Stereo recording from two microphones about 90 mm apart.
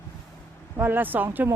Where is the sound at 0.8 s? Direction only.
20° right (ahead or behind).